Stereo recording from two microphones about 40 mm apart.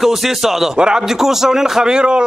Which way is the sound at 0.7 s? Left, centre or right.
Right.